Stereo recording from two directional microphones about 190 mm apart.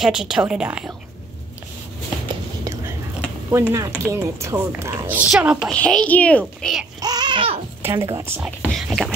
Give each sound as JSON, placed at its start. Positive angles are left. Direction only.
{"t": 0.0, "sound": "a child's voice", "side_deg": -5}
{"t": 3.4, "sound": "a woman's voice", "side_deg": -15}
{"t": 5.7, "sound": "a child's voice", "side_deg": 5}
{"t": 7.0, "sound": "a sound", "side_deg": -20}
{"t": 7.8, "sound": "speech", "side_deg": -15}
{"t": 8.6, "sound": "speech", "side_deg": 0}